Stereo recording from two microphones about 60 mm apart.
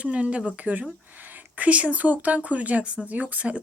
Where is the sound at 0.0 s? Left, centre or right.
Centre.